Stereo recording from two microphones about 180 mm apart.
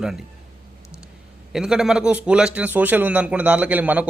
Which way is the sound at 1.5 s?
5° right (ahead or behind).